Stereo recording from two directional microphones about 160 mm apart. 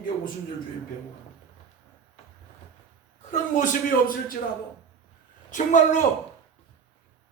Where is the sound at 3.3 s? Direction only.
55° left (ahead or behind).